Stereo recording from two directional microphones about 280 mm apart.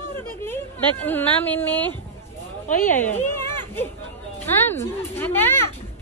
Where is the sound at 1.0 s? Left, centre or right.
Centre.